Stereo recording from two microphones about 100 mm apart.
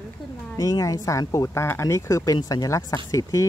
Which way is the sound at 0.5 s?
35° left (ahead or behind).